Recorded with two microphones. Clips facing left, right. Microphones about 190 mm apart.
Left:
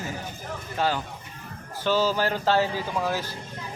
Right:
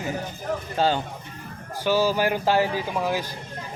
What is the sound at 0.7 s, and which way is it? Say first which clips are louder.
Speech: right 3 dB; 30° right (ahead or behind).